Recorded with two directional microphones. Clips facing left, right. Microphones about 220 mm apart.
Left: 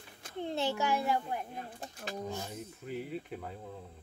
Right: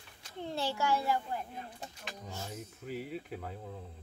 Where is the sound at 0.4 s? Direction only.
20° left (ahead or behind).